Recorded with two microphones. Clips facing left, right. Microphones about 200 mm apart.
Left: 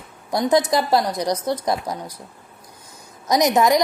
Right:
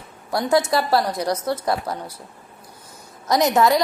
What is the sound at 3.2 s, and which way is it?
Speech, 15° left (ahead or behind).